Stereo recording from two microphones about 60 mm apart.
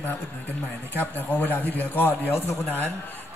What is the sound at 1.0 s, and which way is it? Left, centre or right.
A man's voice, left.